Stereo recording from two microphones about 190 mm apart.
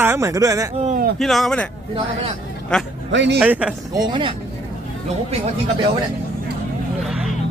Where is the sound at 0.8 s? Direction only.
40° right (ahead or behind).